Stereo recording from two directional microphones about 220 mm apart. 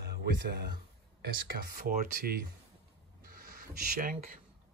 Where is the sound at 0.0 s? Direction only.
50° right (ahead or behind).